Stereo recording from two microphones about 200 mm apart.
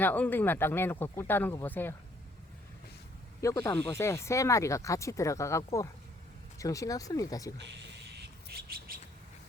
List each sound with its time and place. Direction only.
0.0 s speech: 10° left (ahead or behind)
3.4 s speech: 15° left (ahead or behind)
7.7 s bird: 55° right (ahead or behind)